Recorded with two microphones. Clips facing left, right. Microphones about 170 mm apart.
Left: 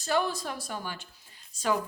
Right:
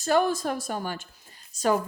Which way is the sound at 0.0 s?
50° right (ahead or behind).